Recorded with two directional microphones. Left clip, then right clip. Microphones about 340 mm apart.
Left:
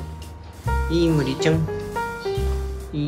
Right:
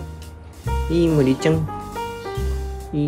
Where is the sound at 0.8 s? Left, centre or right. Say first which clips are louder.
Right 4 dB; centre.